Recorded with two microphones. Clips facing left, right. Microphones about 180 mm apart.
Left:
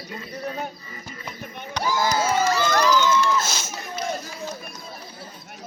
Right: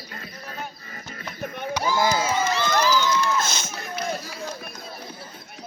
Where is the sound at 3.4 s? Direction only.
5° left (ahead or behind).